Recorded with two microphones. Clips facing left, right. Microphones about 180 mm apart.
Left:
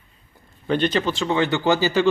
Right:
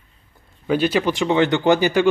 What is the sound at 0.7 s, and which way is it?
Speech, 5° right (ahead or behind).